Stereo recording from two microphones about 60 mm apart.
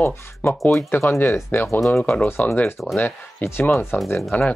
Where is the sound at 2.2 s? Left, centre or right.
Left.